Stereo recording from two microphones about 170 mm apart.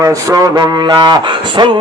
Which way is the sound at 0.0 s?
20° right (ahead or behind).